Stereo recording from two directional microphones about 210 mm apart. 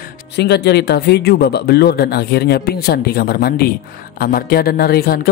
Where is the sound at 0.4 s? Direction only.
50° left (ahead or behind).